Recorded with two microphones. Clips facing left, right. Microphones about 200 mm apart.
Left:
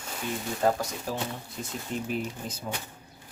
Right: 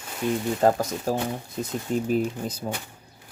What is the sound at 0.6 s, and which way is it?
Speech, 45° right (ahead or behind).